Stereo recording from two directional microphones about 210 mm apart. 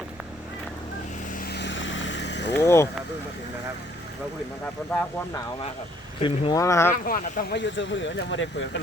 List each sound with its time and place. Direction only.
1.3 s vehicle: 45° left (ahead or behind)
2.6 s speech: 15° left (ahead or behind)
4.9 s speech: 10° left (ahead or behind)
6.2 s speech: 20° left (ahead or behind)
6.9 s speech: 40° left (ahead or behind); by 8.4 s 60° left (ahead or behind)